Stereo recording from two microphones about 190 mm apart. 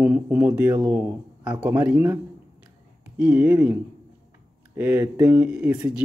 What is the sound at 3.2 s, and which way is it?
Speech, 10° right (ahead or behind).